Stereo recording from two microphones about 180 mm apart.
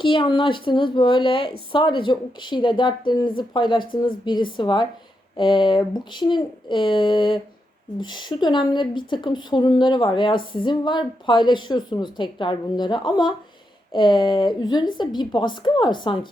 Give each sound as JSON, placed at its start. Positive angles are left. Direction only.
{"t": 0.0, "sound": "speech", "side_deg": 30}